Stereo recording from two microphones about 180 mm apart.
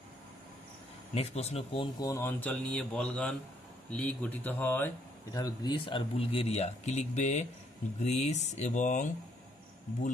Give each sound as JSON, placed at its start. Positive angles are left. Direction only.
{"t": 1.1, "sound": "speech", "side_deg": 35}